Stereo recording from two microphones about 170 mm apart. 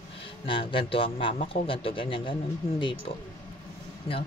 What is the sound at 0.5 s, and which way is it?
A man's voice, 30° left (ahead or behind).